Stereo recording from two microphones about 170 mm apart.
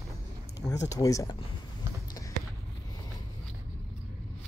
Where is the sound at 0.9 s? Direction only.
20° left (ahead or behind).